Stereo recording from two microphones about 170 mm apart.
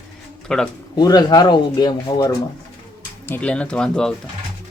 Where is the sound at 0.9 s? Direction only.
25° left (ahead or behind).